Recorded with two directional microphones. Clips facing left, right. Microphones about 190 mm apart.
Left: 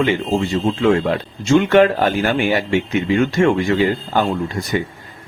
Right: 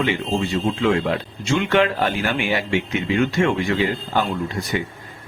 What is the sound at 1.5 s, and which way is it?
Speech, 45° left (ahead or behind).